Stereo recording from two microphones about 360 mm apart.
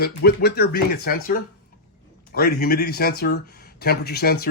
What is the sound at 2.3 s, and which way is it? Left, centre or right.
Speech, left.